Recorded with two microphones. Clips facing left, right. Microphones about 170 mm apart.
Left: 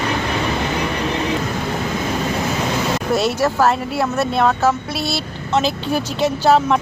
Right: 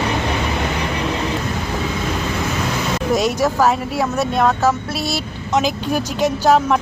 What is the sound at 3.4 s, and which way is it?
Speech, 10° right (ahead or behind).